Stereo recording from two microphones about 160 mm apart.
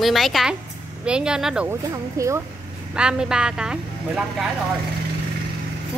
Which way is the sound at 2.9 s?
5° right (ahead or behind).